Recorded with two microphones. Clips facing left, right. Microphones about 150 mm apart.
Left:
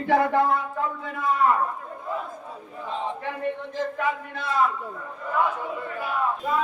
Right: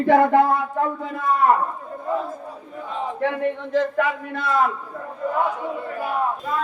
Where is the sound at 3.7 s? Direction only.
60° right (ahead or behind).